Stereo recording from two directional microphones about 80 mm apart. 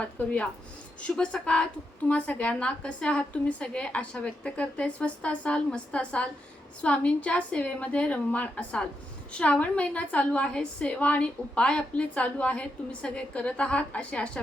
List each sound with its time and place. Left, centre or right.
0.0 s a woman's voice: centre